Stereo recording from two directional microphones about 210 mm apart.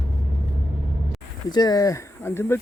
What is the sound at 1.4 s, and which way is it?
Speech, 20° left (ahead or behind).